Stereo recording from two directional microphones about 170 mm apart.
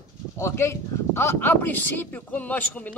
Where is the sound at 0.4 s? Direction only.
15° left (ahead or behind).